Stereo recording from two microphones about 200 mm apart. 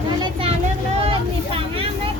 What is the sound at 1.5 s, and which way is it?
Vehicle, 25° right (ahead or behind).